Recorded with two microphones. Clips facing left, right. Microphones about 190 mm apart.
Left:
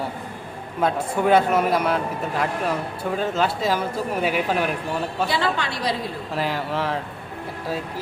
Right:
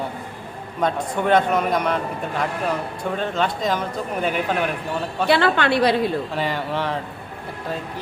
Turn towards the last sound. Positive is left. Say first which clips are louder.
# right 1 dB
turn(degrees=0)  # may be behind; listen again after turning